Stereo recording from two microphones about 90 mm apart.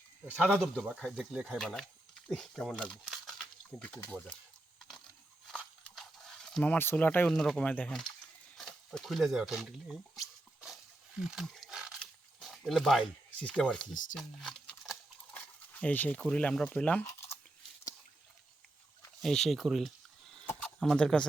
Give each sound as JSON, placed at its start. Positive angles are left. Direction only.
{"t": 0.3, "sound": "speech", "side_deg": -15}
{"t": 0.5, "sound": "speech", "side_deg": 5}
{"t": 1.2, "sound": "speech", "side_deg": -5}
{"t": 3.8, "sound": "speech", "side_deg": 20}
{"t": 5.9, "sound": "horse", "side_deg": 5}
{"t": 6.6, "sound": "speech", "side_deg": 20}
{"t": 7.3, "sound": "speech", "side_deg": 5}
{"t": 8.5, "sound": "a sound", "side_deg": 5}
{"t": 11.2, "sound": "wild animals", "side_deg": -5}
{"t": 11.9, "sound": "a sound", "side_deg": 0}
{"t": 13.4, "sound": "speech", "side_deg": 10}
{"t": 19.2, "sound": "speech", "side_deg": 5}